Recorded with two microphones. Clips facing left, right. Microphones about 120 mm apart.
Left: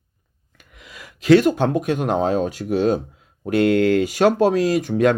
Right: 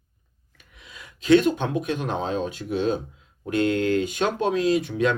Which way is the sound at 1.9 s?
65° left (ahead or behind).